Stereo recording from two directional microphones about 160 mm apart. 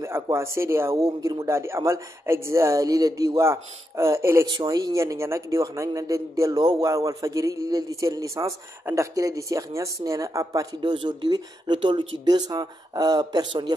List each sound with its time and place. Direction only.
0.0 s speech: 15° right (ahead or behind)